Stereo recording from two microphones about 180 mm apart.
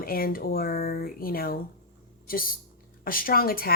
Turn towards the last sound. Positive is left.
turn(degrees=55)  # may be behind; listen again after turning